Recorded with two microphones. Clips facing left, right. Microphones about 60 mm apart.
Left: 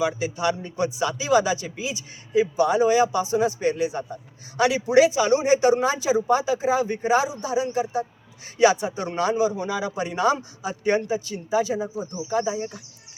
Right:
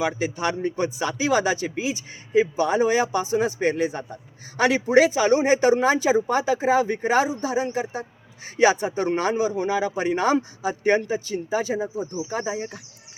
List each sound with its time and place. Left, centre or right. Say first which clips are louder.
0.0 s a man's voice: left 1 dB; right
12.5 s speech: left 1 dB; right